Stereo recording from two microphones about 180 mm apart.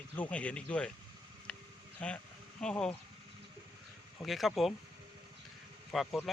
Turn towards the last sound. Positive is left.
turn(degrees=0)  # may be behind; listen again after turning